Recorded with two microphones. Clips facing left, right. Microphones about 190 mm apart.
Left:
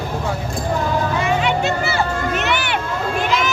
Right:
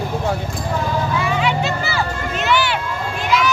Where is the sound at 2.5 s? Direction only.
55° left (ahead or behind).